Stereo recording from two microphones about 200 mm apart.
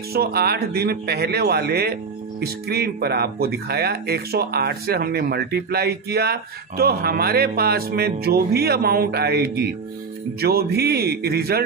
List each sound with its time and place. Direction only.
0.1 s speech: 50° right (ahead or behind)